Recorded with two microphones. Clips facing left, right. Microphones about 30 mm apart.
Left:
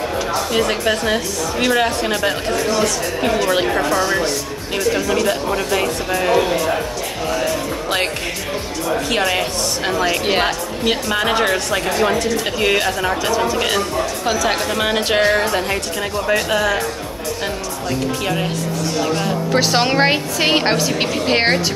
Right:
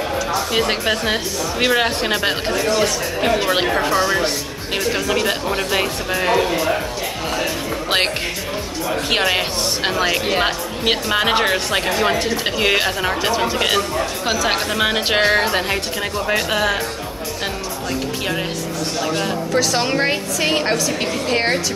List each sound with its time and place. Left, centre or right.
0.8 s speech: centre
3.2 s speech: centre
6.1 s speech: centre
10.4 s speech: centre
15.1 s speech: right
16.3 s speech: centre
19.5 s a woman's voice: left